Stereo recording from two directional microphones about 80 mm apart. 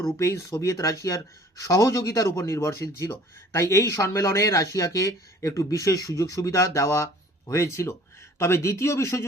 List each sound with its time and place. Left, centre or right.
0.0 s speech: left